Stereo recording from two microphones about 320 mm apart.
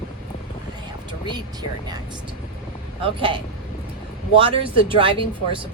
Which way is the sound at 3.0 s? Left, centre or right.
Centre.